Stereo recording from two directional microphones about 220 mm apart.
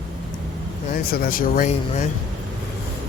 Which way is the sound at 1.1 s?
40° left (ahead or behind).